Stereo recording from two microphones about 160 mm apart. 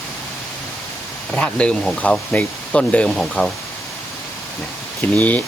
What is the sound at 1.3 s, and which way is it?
Speech, 5° left (ahead or behind).